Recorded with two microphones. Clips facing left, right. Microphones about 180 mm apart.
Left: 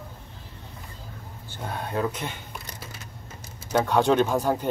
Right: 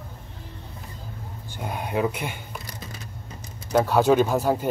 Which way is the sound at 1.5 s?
15° right (ahead or behind).